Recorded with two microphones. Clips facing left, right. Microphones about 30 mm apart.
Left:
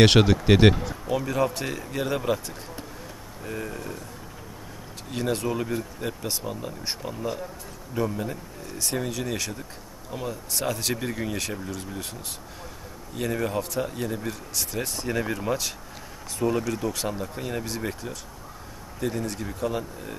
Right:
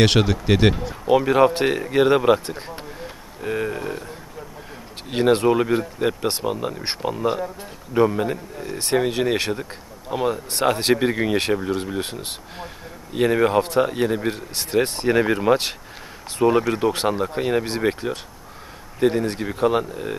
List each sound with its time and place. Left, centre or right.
0.0 s speech: centre
1.0 s speech: right
5.1 s speech: right